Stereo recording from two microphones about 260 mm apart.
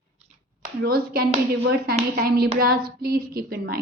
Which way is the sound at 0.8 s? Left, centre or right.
Right.